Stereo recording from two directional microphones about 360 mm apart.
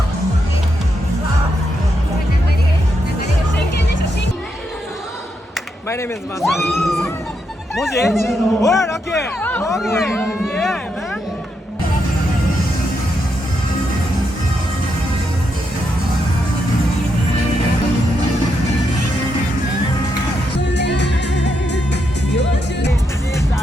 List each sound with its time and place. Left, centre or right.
5.5 s cat: centre
7.8 s speech: centre
20.6 s music: left